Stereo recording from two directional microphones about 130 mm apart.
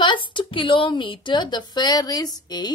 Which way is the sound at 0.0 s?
40° left (ahead or behind).